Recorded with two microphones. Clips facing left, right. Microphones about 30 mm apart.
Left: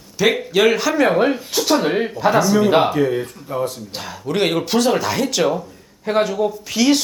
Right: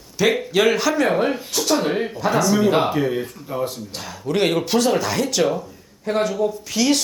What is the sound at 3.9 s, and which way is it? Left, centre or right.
Speech, centre.